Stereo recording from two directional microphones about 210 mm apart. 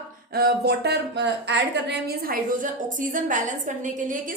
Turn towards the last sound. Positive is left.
turn(degrees=-40)  # may be behind; listen again after turning